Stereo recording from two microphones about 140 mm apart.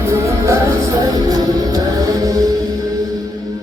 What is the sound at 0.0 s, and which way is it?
Music, 20° right (ahead or behind).